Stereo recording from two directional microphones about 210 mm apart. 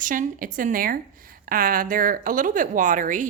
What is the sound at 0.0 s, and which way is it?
A woman's voice, 40° right (ahead or behind).